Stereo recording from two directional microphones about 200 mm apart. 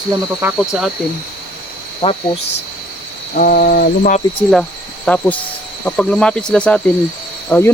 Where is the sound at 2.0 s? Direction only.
30° left (ahead or behind).